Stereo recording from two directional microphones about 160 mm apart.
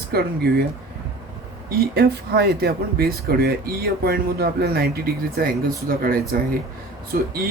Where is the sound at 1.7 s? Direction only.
85° right.